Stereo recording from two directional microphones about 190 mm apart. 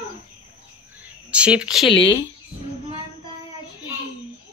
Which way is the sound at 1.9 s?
25° left (ahead or behind).